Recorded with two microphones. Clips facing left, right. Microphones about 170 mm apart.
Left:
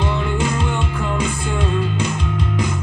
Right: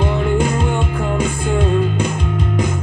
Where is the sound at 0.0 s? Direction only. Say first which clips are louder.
Right 4 dB; 45° right (ahead or behind).